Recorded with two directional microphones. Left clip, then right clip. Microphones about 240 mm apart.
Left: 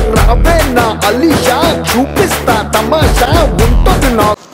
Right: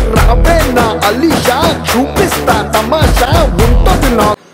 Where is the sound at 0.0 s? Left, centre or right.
Centre.